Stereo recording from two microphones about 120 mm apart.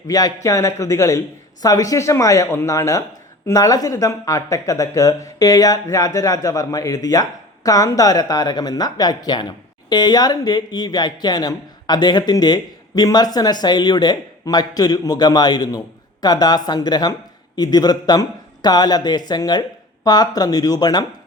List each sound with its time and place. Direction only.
0.1 s speech: 30° left (ahead or behind)